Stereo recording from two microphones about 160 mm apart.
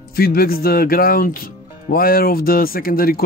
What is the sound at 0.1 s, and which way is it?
Speech, 65° left (ahead or behind).